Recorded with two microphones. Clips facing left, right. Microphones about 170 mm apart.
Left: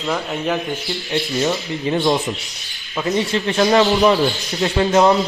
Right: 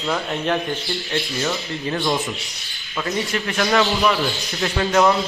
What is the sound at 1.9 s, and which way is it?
Speech, 25° left (ahead or behind).